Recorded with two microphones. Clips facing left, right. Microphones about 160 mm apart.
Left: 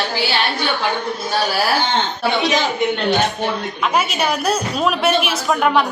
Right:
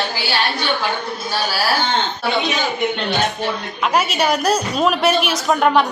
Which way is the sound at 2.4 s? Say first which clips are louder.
Left 4 dB; 80° left.